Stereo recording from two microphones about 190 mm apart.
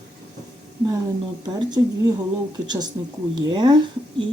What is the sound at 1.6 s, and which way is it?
Speech, 20° right (ahead or behind).